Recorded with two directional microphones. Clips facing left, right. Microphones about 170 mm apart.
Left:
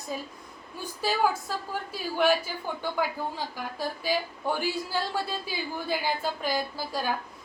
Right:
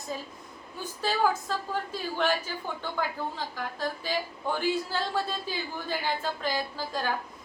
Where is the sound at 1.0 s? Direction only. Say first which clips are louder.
Even; 10° left (ahead or behind).